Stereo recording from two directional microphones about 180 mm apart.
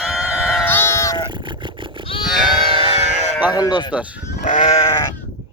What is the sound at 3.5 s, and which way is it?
Sheep, 20° left (ahead or behind).